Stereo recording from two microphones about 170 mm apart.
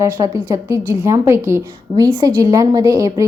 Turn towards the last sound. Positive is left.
turn(degrees=-20)  # may be behind; listen again after turning